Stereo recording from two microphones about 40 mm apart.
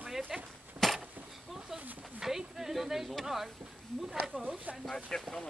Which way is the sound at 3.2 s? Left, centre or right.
Centre.